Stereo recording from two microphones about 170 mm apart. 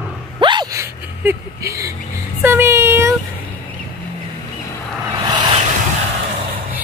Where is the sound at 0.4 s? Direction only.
25° right (ahead or behind).